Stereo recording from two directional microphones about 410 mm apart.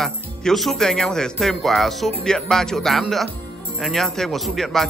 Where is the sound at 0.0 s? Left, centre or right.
Centre.